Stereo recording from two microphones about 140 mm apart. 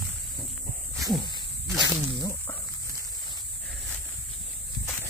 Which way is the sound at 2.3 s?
15° left (ahead or behind).